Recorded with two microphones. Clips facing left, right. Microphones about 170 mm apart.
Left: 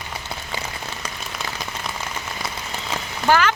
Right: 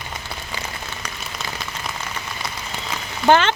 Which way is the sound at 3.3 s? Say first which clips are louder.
Right 3 dB; 25° right (ahead or behind).